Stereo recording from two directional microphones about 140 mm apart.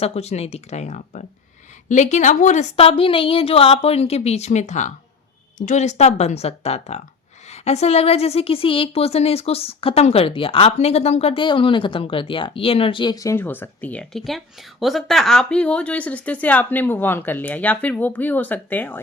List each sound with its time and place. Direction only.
0.0 s a woman's voice: 45° left (ahead or behind)
11.4 s speech: 35° left (ahead or behind); by 18.9 s 10° left (ahead or behind)